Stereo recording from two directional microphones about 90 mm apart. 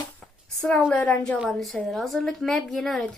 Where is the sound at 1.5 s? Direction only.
Centre (ahead or behind).